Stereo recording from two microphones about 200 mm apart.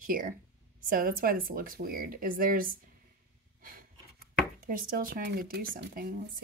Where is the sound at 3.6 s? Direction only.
45° right (ahead or behind).